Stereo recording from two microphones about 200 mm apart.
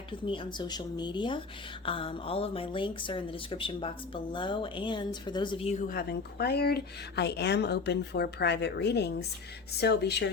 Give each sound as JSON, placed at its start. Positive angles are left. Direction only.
{"t": 0.3, "sound": "speech", "side_deg": 20}
{"t": 5.9, "sound": "speech", "side_deg": 50}